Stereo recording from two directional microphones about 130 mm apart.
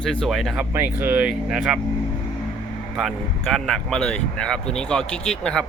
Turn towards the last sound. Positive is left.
turn(degrees=5)  # may be behind; listen again after turning